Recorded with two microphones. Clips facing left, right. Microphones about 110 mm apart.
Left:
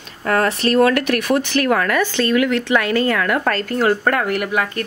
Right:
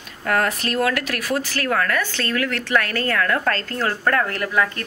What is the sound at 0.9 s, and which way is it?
Speech, 65° left (ahead or behind).